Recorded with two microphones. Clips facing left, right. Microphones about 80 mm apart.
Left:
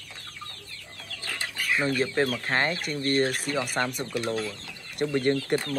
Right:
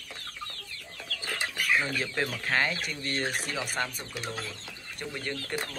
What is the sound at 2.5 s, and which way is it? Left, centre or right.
Speech, left.